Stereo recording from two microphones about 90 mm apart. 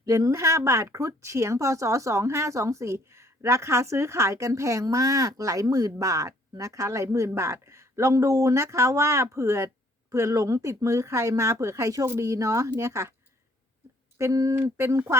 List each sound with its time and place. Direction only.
0.0 s a woman's voice: 40° right (ahead or behind)
14.2 s a woman's voice: 35° right (ahead or behind)